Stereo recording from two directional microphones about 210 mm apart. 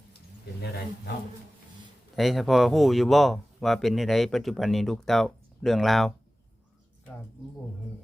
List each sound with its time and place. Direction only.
0.6 s speech: 50° left (ahead or behind)
2.1 s speech: centre (ahead or behind)